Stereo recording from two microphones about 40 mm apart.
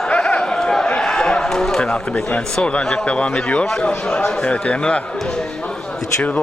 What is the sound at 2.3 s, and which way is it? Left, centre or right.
A man's voice, left.